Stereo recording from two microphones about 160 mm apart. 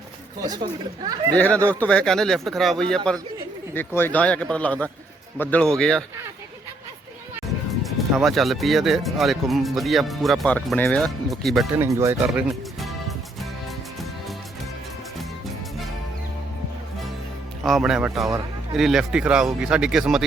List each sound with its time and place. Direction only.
0.6 s speech: 25° right (ahead or behind)
1.4 s speech: 10° left (ahead or behind)
3.8 s speech: 15° left (ahead or behind)
7.4 s speech: centre (ahead or behind)
11.8 s speech: 15° right (ahead or behind)
12.2 s music: 5° right (ahead or behind)
17.6 s speech: centre (ahead or behind)